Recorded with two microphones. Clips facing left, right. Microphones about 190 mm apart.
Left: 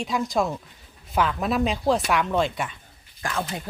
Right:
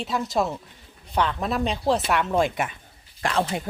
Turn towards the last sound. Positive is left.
turn(degrees=-30)  # may be behind; listen again after turning